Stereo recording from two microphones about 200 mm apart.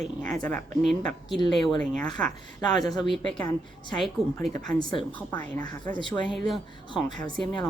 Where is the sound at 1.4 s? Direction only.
20° left (ahead or behind).